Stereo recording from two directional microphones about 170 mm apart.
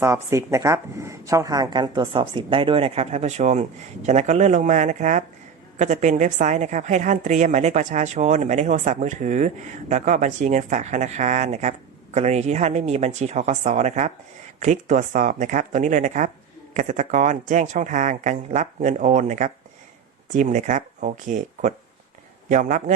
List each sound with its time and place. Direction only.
0.0 s speech: 15° right (ahead or behind); by 23.0 s 50° right (ahead or behind)